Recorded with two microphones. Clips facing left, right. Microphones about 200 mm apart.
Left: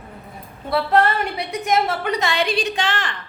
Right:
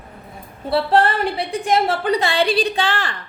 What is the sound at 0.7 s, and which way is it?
A woman's voice, 30° right (ahead or behind).